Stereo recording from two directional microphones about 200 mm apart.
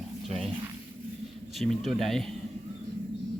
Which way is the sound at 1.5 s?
Centre (ahead or behind).